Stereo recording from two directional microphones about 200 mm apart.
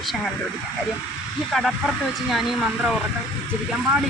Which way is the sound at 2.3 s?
Centre (ahead or behind).